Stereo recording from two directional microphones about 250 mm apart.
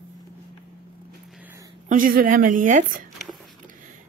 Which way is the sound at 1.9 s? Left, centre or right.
Right.